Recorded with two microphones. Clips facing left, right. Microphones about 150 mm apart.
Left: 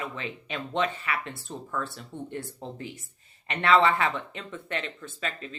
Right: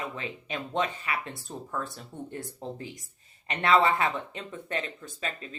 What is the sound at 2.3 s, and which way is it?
Speech, 35° right (ahead or behind).